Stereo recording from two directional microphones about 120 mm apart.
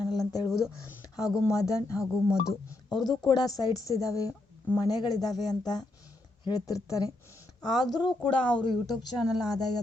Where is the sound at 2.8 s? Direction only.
5° left (ahead or behind).